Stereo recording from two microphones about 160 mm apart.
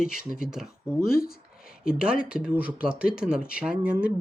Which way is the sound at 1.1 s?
70° left (ahead or behind).